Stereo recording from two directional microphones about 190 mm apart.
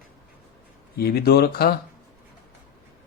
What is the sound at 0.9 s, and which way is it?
Speech, 55° left (ahead or behind).